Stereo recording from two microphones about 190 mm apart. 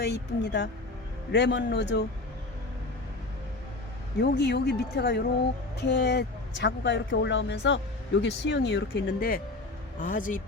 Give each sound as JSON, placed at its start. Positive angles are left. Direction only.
{"t": 0.0, "sound": "speech", "side_deg": 60}
{"t": 4.2, "sound": "speech", "side_deg": 60}